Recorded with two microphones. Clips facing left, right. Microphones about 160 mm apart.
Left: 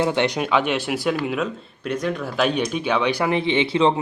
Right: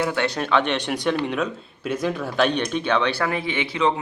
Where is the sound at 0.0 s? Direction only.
20° left (ahead or behind).